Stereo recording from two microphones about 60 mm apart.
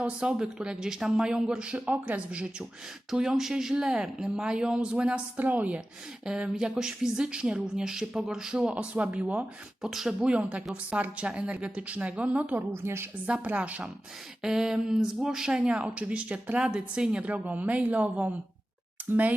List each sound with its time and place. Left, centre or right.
0.0 s speech: centre
3.1 s speech: centre
5.4 s speech: right
6.2 s speech: centre
9.8 s speech: centre
10.2 s speech: centre
12.7 s a woman's voice: right
13.2 s speech: centre
14.4 s speech: centre
17.4 s speech: right